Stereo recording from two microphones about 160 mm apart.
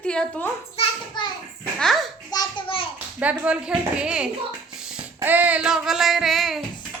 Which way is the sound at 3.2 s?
10° right (ahead or behind).